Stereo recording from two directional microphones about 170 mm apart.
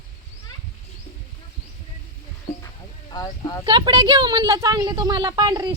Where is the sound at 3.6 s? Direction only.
25° right (ahead or behind).